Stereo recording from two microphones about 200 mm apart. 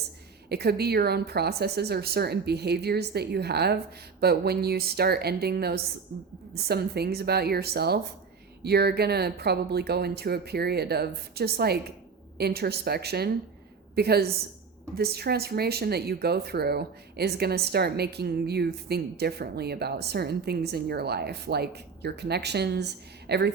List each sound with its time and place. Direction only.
0.4 s speech: 50° right (ahead or behind)